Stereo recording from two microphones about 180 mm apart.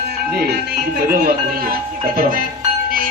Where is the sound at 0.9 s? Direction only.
55° right (ahead or behind).